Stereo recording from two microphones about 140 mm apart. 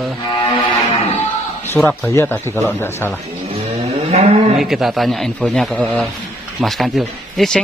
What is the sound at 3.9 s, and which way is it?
Moo, 50° right (ahead or behind).